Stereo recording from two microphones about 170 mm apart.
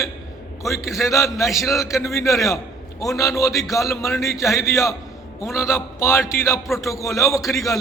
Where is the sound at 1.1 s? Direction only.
15° left (ahead or behind).